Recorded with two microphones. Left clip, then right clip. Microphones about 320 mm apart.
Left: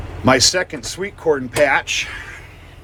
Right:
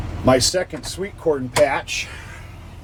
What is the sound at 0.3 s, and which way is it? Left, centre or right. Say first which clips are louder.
Speech: left 2 dB; left.